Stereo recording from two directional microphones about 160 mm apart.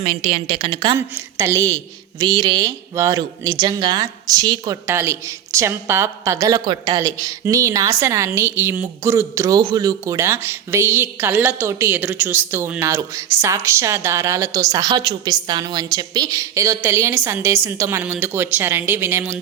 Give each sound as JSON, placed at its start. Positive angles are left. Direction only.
{"t": 0.0, "sound": "a woman's voice", "side_deg": -40}
{"t": 0.9, "sound": "a woman's voice", "side_deg": -15}